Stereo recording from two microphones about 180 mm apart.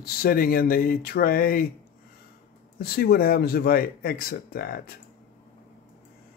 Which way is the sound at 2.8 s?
55° left (ahead or behind).